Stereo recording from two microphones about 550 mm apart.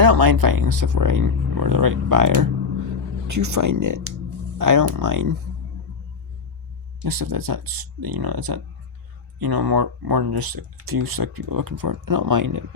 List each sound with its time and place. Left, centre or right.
0.0 s speech: right
7.0 s speech: right